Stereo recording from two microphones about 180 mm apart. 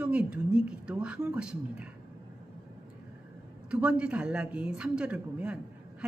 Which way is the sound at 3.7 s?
5° right (ahead or behind).